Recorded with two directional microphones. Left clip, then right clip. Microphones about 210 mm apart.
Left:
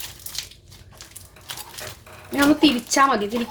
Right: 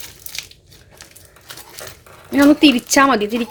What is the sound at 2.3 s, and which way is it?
Speech, 35° right (ahead or behind).